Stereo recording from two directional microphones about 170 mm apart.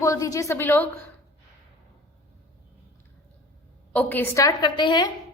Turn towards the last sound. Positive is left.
turn(degrees=25)  # may be behind; listen again after turning